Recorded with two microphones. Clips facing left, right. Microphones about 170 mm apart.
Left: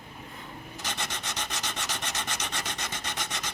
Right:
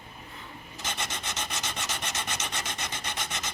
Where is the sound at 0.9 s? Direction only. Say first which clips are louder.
Right 1 dB; 20° right (ahead or behind).